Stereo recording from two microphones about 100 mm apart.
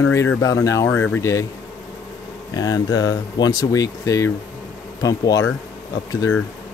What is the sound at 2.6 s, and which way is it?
Speech, 40° left (ahead or behind).